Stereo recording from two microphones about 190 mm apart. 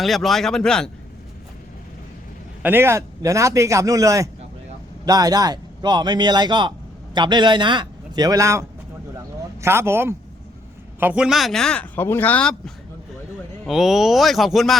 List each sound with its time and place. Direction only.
0.0 s speech: centre (ahead or behind)
2.6 s a man's voice: 10° right (ahead or behind)